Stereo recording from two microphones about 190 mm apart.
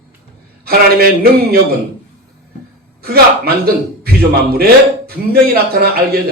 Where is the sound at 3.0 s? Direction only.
55° right (ahead or behind).